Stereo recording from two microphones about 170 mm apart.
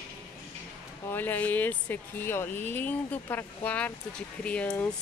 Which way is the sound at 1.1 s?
10° left (ahead or behind).